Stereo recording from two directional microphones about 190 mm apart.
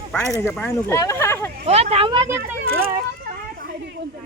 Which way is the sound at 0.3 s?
10° left (ahead or behind).